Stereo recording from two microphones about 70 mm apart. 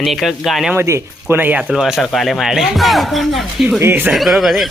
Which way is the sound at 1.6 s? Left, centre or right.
Centre.